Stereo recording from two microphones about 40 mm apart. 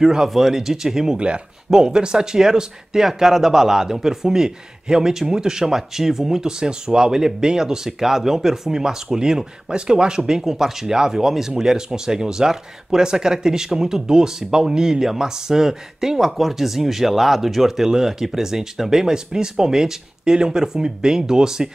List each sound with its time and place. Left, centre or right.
0.0 s speech: centre
1.1 s speech: right
1.7 s speech: centre